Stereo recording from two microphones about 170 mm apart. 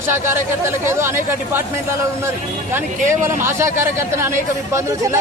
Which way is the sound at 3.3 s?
15° right (ahead or behind).